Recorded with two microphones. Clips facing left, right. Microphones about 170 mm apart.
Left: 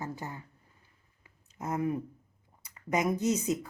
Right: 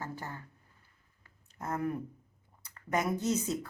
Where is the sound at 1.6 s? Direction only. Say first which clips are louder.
Left 3 dB; 15° left (ahead or behind).